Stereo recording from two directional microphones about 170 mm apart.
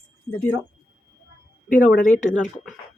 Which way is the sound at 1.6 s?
55° left (ahead or behind).